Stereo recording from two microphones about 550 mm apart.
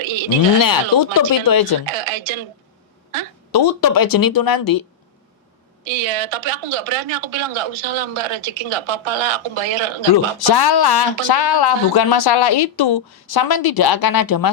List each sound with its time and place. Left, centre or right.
0.0 s a sound: right
0.6 s speech: left
1.9 s speech: right
3.5 s speech: left
6.0 s a woman's voice: right
7.3 s speech: right
7.7 s speech: right
10.3 s speech: left